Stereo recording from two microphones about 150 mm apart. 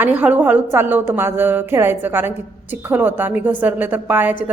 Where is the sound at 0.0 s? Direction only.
10° right (ahead or behind).